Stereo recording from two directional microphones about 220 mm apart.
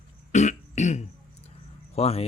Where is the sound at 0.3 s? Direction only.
35° left (ahead or behind).